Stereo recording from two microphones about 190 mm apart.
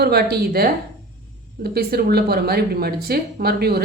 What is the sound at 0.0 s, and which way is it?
Speech, 55° right (ahead or behind).